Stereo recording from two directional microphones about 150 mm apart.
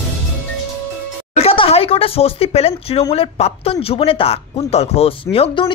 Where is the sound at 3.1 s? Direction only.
40° left (ahead or behind).